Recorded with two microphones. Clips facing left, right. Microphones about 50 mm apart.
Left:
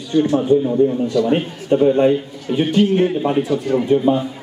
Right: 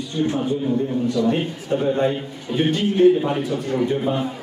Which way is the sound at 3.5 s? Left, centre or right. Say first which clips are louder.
Left 5 dB; left.